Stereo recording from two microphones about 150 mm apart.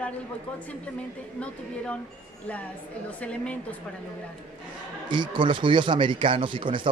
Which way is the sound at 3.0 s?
10° left (ahead or behind).